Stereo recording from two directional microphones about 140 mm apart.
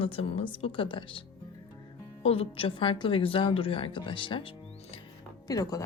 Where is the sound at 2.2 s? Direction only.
40° left (ahead or behind).